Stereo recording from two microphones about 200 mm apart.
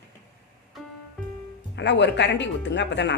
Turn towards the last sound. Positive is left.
turn(degrees=60)  # may be behind; listen again after turning